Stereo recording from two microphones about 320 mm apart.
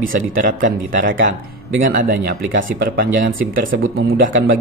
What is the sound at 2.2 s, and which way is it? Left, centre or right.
Speech, right.